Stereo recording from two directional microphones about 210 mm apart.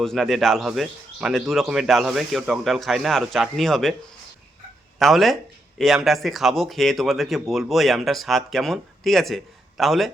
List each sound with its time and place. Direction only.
0.0 s speech: centre (ahead or behind)
4.9 s speech: centre (ahead or behind)